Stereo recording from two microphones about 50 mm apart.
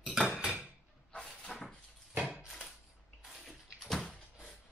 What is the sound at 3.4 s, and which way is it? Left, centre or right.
Bathtub, centre.